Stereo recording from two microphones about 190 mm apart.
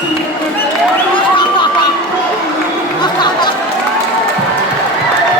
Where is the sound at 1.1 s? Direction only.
25° left (ahead or behind).